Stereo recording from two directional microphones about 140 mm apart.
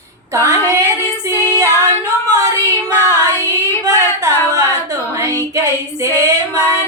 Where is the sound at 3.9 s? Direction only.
25° right (ahead or behind).